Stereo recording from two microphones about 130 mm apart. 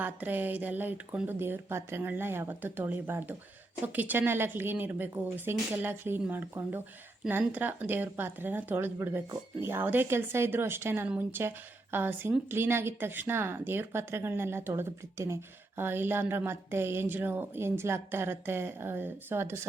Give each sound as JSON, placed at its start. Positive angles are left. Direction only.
{"t": 0.0, "sound": "a woman's voice", "side_deg": -15}